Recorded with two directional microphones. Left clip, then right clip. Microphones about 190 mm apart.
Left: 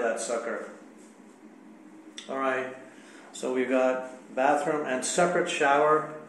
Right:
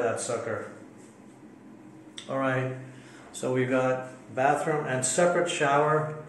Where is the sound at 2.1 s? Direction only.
5° right (ahead or behind).